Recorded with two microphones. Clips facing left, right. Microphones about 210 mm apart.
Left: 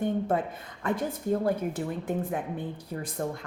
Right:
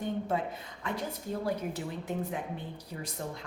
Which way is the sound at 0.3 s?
50° left (ahead or behind).